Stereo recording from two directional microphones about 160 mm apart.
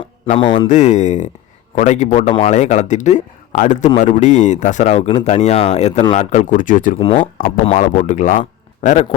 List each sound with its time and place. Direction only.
0.3 s a man's voice: 30° left (ahead or behind)
0.7 s speech: 50° left (ahead or behind)
7.0 s a man's voice: 35° left (ahead or behind)